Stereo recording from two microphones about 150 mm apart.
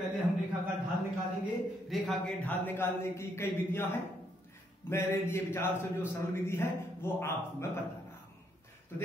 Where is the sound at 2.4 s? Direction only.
15° left (ahead or behind).